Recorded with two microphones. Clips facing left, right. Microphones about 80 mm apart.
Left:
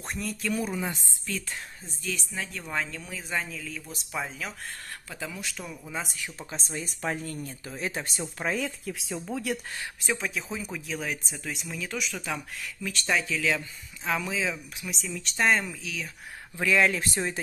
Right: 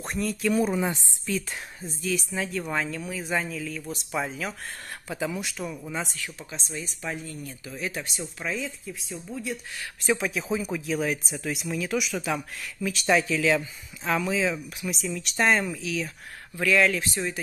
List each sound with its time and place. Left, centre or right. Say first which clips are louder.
0.0 s speech: right 5 dB; centre
0.6 s a woman's voice: right 9 dB; right
2.0 s speech: right 5 dB; centre
5.1 s speech: right 7 dB; centre
5.6 s speech: right 4 dB; centre
6.5 s speech: even; left
8.4 s speech: left 2 dB; left
8.9 s speech: left 3 dB; left
10.0 s speech: right 5 dB; centre
16.5 s speech: right 2 dB; left
17.0 s speech: even; left